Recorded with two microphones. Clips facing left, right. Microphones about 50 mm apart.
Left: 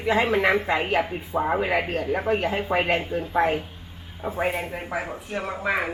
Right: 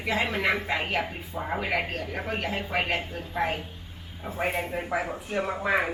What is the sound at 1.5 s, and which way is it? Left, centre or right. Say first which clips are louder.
Speech: left 2 dB; centre.